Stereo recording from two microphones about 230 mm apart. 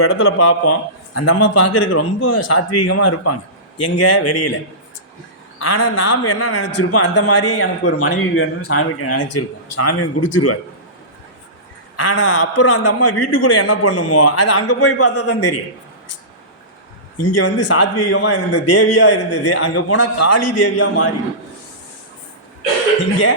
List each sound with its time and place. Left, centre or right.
0.0 s a man's voice: left
5.5 s a man's voice: left
10.2 s a man's voice: left
11.9 s a man's voice: left
17.2 s a man's voice: left